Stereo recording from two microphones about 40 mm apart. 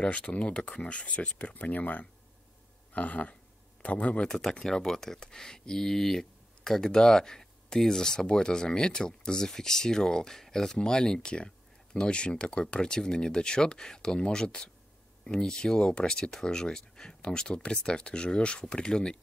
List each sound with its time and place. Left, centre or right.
0.0 s speech: left
4.5 s speech: centre